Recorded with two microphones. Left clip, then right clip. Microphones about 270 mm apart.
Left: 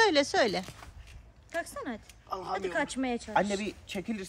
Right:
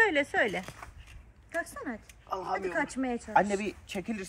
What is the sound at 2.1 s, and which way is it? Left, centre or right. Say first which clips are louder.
Speech: right 2 dB; centre.